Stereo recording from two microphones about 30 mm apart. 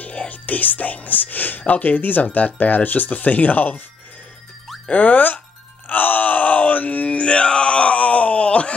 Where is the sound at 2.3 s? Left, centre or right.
Left.